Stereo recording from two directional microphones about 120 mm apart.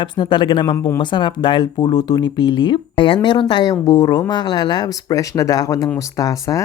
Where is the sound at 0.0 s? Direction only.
40° left (ahead or behind).